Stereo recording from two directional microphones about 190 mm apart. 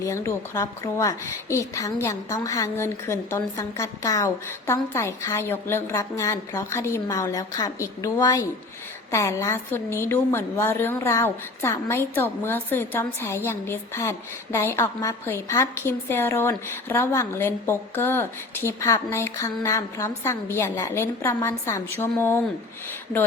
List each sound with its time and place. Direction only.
0.0 s a woman's voice: 15° left (ahead or behind)